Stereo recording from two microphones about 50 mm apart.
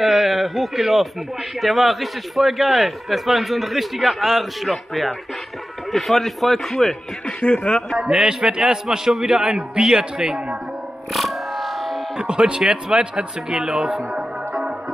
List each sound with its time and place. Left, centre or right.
0.0 s speech: centre
7.2 s speech: left
8.0 s a man's voice: centre
11.1 s music: centre
12.2 s speech: centre